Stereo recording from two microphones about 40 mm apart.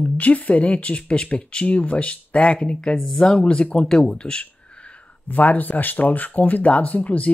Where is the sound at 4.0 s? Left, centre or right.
Left.